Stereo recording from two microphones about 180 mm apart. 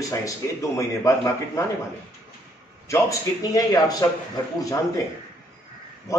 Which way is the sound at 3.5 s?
20° left (ahead or behind).